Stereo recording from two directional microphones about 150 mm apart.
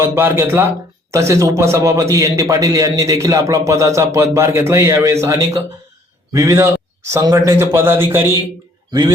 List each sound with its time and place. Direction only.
0.0 s a man's voice: 15° right (ahead or behind)
8.9 s speech: 25° right (ahead or behind)